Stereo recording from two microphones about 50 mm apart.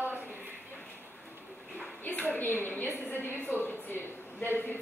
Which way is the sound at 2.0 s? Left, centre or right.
Left.